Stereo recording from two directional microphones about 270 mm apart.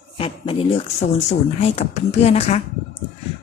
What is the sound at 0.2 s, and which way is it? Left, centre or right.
Speech, centre.